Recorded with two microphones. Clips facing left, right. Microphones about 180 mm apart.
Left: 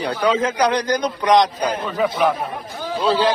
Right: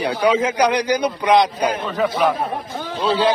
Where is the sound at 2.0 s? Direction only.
10° left (ahead or behind).